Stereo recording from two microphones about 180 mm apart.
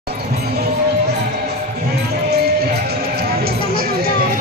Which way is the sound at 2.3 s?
60° right (ahead or behind).